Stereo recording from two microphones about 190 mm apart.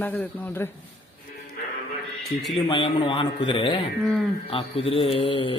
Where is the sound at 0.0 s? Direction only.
10° left (ahead or behind).